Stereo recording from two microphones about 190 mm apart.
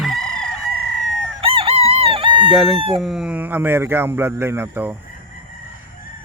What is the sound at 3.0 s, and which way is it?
Speech, centre (ahead or behind).